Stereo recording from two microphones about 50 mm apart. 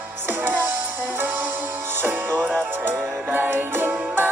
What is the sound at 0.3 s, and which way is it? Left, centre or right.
Music, right.